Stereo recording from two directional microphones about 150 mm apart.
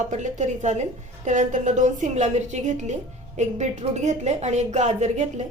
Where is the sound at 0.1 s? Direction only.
50° right (ahead or behind).